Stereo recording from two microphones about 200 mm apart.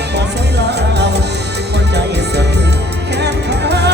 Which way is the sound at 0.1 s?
55° right (ahead or behind).